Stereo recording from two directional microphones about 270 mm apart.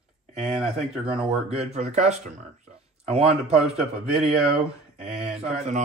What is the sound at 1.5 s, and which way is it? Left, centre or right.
Speech, right.